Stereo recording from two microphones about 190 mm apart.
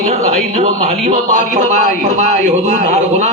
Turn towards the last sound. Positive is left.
turn(degrees=-40)  # may be behind; listen again after turning